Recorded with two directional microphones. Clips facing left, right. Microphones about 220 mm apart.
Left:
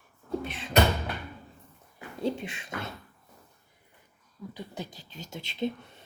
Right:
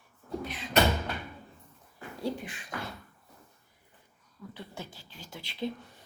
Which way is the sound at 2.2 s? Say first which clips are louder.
Left 4 dB; 20° left (ahead or behind).